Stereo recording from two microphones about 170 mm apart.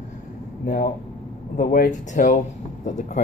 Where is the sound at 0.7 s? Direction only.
50° left (ahead or behind).